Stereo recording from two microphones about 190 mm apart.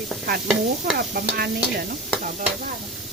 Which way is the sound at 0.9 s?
50° right (ahead or behind).